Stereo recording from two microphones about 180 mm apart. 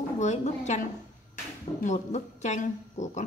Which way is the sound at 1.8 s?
40° left (ahead or behind).